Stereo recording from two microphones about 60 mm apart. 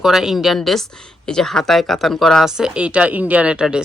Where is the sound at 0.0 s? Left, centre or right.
Centre.